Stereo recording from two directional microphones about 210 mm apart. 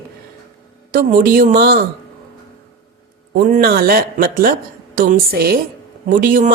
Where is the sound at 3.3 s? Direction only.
40° right (ahead or behind).